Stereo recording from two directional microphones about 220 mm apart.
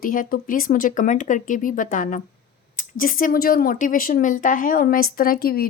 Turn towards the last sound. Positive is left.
turn(degrees=45)  # may be behind; listen again after turning